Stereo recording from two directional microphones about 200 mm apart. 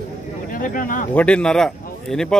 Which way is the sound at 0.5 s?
45° left (ahead or behind).